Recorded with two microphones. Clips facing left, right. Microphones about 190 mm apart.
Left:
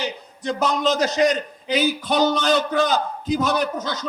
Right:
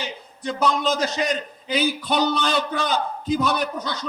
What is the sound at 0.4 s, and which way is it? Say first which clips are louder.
A man's voice: left 1 dB; 45° left (ahead or behind).